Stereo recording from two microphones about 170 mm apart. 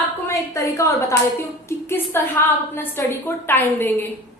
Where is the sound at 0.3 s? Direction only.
20° left (ahead or behind).